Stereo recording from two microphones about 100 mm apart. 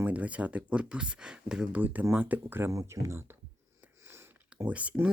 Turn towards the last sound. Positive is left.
turn(degrees=-15)  # may be behind; listen again after turning